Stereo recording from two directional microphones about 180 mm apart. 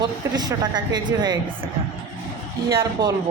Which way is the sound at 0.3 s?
20° right (ahead or behind).